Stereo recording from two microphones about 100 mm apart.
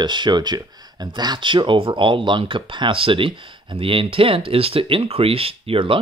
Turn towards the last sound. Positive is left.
turn(degrees=-65)  # may be behind; listen again after turning